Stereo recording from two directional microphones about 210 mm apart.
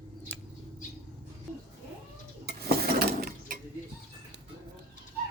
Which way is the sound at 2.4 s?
50° right (ahead or behind).